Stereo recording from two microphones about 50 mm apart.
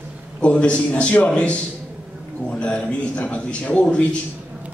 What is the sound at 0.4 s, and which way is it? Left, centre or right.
A man's voice, left.